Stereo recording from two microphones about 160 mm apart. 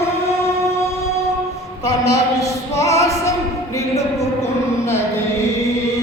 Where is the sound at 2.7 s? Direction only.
20° left (ahead or behind).